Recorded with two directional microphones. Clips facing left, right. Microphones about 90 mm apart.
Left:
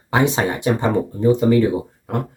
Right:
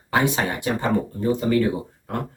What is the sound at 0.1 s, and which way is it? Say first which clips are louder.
Speech: left 4 dB; 25° left (ahead or behind).